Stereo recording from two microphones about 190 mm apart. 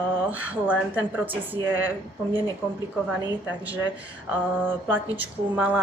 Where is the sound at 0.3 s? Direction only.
10° right (ahead or behind).